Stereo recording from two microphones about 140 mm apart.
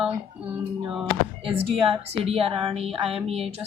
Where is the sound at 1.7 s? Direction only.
40° right (ahead or behind).